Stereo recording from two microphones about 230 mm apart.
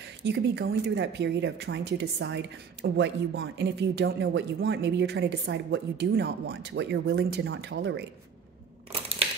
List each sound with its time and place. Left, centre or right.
0.2 s speech: right